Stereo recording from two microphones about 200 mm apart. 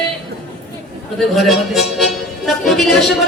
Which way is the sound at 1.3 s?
Centre (ahead or behind).